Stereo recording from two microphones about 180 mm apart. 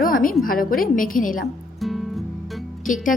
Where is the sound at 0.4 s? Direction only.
50° left (ahead or behind).